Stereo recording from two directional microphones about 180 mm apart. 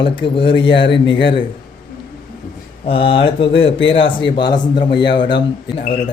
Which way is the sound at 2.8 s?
30° left (ahead or behind).